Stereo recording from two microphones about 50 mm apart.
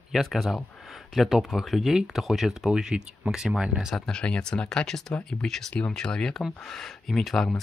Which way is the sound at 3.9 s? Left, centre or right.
Centre.